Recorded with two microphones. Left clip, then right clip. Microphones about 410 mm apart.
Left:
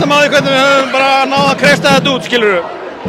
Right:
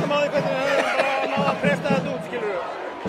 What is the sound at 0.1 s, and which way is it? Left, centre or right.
A man's voice, left.